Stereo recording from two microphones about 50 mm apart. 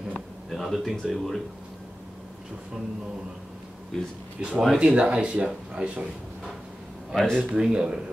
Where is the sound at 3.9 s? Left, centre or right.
Centre.